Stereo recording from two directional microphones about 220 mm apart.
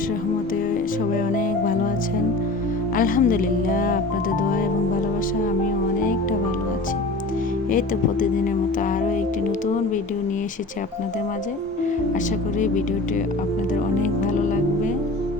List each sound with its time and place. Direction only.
2.9 s speech: 40° left (ahead or behind)
7.7 s speech: 35° left (ahead or behind)
12.5 s speech: 35° left (ahead or behind)
14.0 s speech: 35° left (ahead or behind)